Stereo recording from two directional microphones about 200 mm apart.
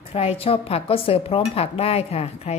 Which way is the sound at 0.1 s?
30° left (ahead or behind).